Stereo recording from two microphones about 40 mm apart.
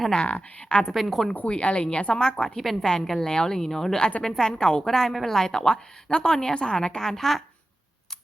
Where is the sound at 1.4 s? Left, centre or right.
Left.